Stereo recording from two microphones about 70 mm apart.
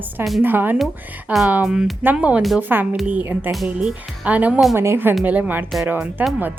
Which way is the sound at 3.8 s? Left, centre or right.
Centre.